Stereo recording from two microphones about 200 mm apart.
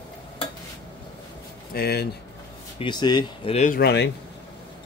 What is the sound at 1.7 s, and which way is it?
Speech, 50° left (ahead or behind).